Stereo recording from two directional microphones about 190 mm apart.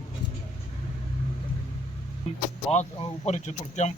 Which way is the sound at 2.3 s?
35° left (ahead or behind).